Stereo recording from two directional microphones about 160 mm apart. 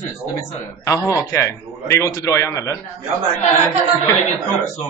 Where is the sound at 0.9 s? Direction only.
20° left (ahead or behind).